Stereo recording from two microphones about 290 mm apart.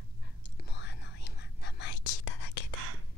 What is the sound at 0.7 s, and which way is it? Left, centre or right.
Whispering, left.